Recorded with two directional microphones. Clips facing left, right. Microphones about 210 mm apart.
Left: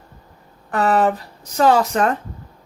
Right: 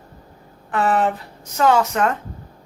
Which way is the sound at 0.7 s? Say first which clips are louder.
Left 2 dB; 40° left (ahead or behind).